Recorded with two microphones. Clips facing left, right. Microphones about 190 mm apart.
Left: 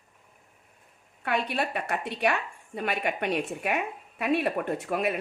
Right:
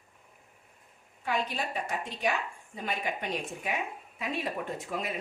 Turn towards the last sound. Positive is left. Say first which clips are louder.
# left 7 dB
turn(degrees=65)  # may be behind; listen again after turning